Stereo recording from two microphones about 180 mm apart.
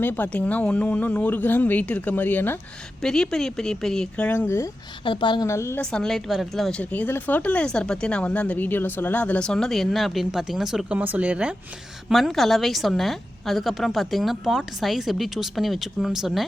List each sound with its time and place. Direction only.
0.0 s speech: 10° left (ahead or behind)
5.0 s a woman's voice: 25° left (ahead or behind)
5.8 s speech: 5° left (ahead or behind)